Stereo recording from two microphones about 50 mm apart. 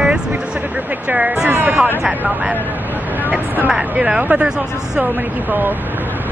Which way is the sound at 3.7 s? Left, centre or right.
Centre.